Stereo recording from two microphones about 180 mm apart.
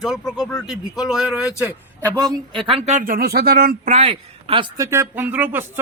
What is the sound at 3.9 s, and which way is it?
Speech, 35° right (ahead or behind).